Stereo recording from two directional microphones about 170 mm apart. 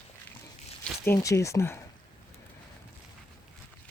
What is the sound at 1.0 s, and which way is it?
Speech, 15° left (ahead or behind).